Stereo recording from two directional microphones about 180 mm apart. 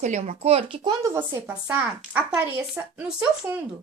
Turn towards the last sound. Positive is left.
turn(degrees=-10)  # may be behind; listen again after turning